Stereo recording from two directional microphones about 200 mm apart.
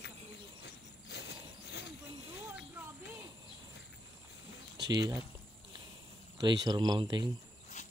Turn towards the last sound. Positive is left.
turn(degrees=35)  # may be behind; listen again after turning